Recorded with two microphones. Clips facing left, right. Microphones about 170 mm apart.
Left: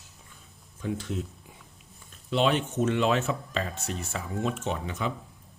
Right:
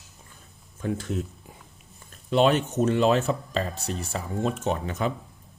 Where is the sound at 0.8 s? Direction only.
50° right (ahead or behind).